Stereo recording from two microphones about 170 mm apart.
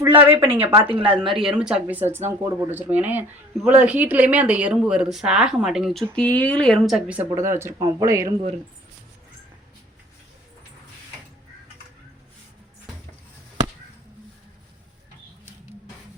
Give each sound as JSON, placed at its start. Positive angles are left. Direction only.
{"t": 0.2, "sound": "speech", "side_deg": -10}
{"t": 0.7, "sound": "speech", "side_deg": -30}
{"t": 1.4, "sound": "a woman's voice", "side_deg": -5}
{"t": 7.3, "sound": "speech", "side_deg": -15}